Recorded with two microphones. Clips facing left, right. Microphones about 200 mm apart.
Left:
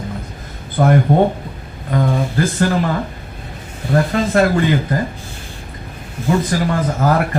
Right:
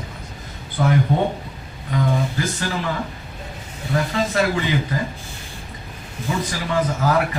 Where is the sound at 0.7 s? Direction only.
55° left (ahead or behind).